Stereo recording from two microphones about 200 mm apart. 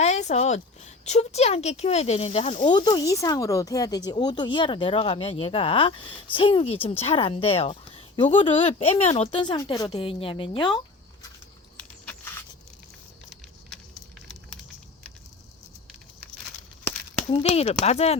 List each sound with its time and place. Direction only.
0.0 s speech: 35° left (ahead or behind)
17.2 s speech: 30° left (ahead or behind)